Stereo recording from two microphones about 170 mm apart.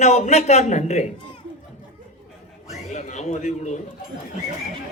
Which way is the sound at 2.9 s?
45° left (ahead or behind).